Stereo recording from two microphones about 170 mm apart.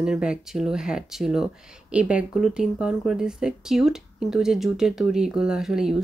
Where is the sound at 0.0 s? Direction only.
5° right (ahead or behind).